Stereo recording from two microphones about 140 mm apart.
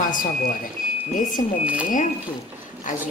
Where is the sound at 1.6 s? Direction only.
10° right (ahead or behind).